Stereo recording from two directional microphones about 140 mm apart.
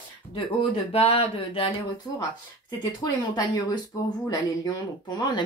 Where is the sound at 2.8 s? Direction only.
30° left (ahead or behind).